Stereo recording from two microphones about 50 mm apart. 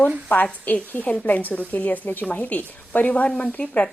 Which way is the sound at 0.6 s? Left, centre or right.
Left.